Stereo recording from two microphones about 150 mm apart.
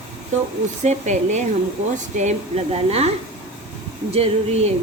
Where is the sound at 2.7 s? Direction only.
45° right (ahead or behind).